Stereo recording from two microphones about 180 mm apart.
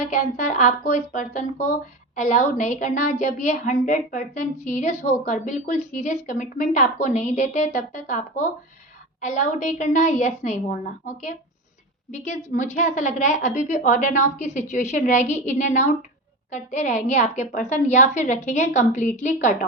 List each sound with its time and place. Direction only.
0.1 s a woman's voice: 45° left (ahead or behind)